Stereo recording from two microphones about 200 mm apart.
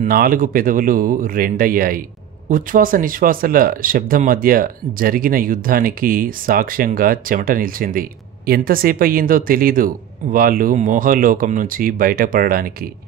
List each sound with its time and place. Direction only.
0.0 s speech: 45° right (ahead or behind)